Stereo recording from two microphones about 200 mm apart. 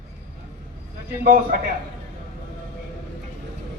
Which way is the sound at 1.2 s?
45° right (ahead or behind).